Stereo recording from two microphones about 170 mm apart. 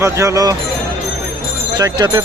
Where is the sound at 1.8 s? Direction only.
25° right (ahead or behind).